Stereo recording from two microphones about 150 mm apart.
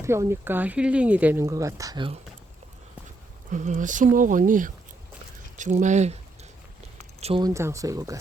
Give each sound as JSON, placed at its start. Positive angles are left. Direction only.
{"t": 0.0, "sound": "speech", "side_deg": -20}
{"t": 3.5, "sound": "speech", "side_deg": -55}
{"t": 7.2, "sound": "speech", "side_deg": -40}
{"t": 7.4, "sound": "speech", "side_deg": -20}